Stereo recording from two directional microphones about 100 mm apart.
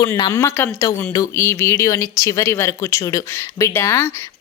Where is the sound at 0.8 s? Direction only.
35° left (ahead or behind).